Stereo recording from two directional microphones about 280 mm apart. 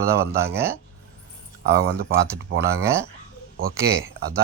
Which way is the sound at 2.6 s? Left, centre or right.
Centre.